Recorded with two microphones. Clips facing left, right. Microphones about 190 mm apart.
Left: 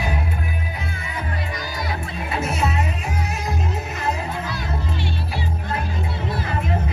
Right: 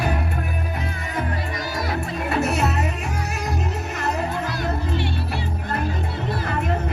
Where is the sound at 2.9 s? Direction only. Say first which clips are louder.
Even; 65° right (ahead or behind).